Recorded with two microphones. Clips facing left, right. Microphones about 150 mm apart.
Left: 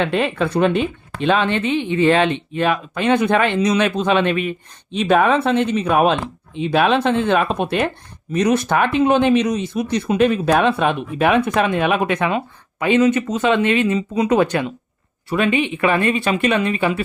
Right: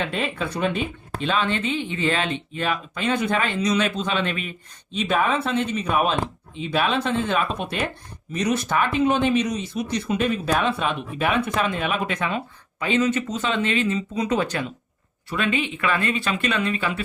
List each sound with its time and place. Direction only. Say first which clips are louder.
0.0 s speech: left 7 dB; 60° left (ahead or behind)